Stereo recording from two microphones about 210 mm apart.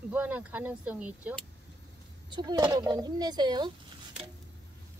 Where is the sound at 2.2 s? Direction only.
20° right (ahead or behind).